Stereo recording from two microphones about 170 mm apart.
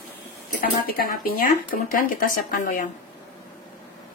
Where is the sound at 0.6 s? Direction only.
55° left (ahead or behind).